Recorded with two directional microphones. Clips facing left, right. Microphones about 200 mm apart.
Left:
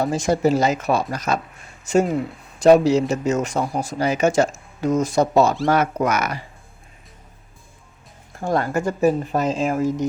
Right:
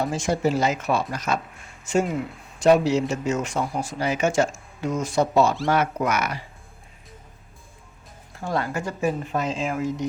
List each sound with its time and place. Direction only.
0.1 s speech: 40° left (ahead or behind)
8.4 s speech: 50° left (ahead or behind)